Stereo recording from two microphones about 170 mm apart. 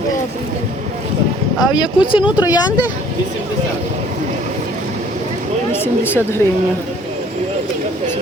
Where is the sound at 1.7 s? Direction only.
30° left (ahead or behind).